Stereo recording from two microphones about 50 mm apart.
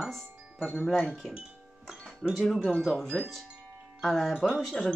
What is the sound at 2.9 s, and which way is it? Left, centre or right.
Speech, centre.